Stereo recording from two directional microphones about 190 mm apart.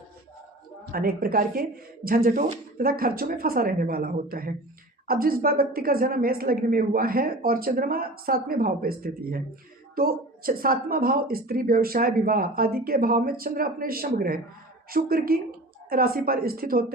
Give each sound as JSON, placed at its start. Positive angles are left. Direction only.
{"t": 0.9, "sound": "speech", "side_deg": -50}